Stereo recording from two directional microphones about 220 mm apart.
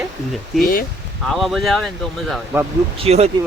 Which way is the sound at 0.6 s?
40° left (ahead or behind).